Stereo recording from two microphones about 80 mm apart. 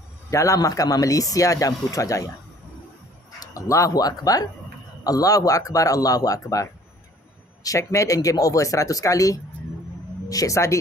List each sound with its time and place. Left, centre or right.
0.3 s speech: left
3.3 s speech: left